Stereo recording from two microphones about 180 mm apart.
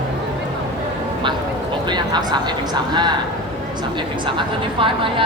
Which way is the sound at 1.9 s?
25° right (ahead or behind).